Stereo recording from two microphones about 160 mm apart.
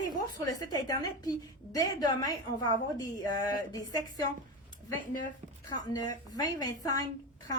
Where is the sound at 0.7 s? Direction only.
25° left (ahead or behind).